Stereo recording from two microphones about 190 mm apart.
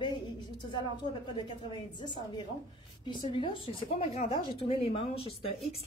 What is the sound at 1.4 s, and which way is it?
A woman's voice, 25° left (ahead or behind).